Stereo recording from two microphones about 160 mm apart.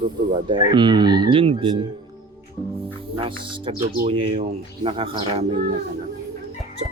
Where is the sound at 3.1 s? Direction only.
30° right (ahead or behind).